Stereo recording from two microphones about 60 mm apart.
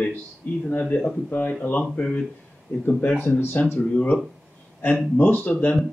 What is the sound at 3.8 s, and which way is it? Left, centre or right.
Speech, centre.